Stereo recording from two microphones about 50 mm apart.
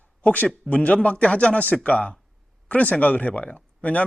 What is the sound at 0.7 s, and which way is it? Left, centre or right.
Speech, left.